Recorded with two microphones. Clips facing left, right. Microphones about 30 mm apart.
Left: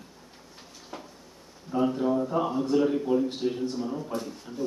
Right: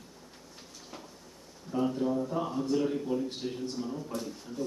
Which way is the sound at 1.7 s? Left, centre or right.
Centre.